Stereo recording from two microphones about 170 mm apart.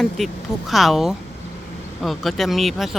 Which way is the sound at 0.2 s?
Centre (ahead or behind).